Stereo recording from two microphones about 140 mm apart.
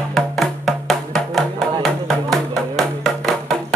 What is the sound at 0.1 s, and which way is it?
Music, centre (ahead or behind).